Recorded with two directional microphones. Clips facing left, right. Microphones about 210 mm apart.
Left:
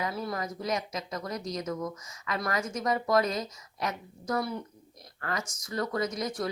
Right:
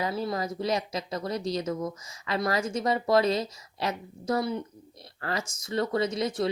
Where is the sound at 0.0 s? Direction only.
30° right (ahead or behind).